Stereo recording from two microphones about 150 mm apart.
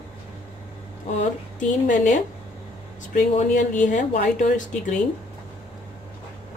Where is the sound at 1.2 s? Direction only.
55° left (ahead or behind).